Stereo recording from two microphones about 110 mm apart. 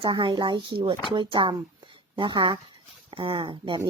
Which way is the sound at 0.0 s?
45° right (ahead or behind).